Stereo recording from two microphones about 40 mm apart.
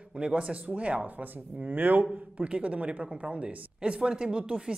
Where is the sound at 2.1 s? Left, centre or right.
Right.